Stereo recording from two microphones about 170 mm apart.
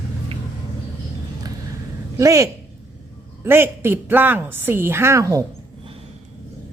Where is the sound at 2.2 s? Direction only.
20° right (ahead or behind).